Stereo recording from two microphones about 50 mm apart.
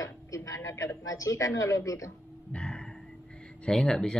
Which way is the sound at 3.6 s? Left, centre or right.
Centre.